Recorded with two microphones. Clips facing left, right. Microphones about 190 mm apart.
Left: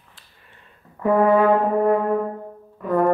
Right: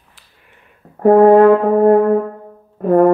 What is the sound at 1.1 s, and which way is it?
Brass instrument, 55° right (ahead or behind).